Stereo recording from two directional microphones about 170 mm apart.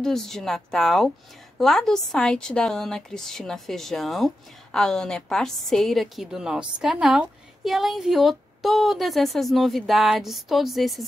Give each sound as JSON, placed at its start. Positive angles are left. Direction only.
{"t": 0.0, "sound": "a woman's voice", "side_deg": 0}